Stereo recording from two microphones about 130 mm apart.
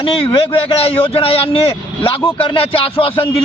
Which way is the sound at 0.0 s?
40° left (ahead or behind).